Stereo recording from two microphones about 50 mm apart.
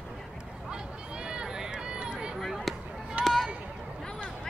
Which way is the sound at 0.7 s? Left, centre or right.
Centre.